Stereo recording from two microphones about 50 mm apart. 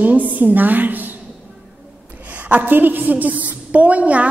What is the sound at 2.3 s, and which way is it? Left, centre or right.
A woman's voice, right.